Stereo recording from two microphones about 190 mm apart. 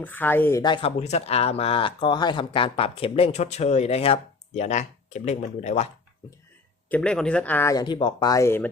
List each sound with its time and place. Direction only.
0.0 s speech: 10° left (ahead or behind)
0.6 s speech: 25° left (ahead or behind)
6.9 s speech: 5° left (ahead or behind)